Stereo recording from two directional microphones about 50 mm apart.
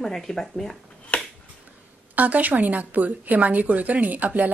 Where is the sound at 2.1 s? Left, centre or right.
Right.